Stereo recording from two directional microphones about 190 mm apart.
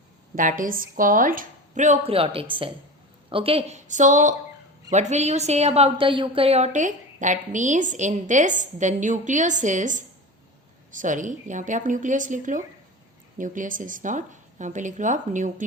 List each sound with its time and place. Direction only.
0.3 s a woman's voice: 45° right (ahead or behind)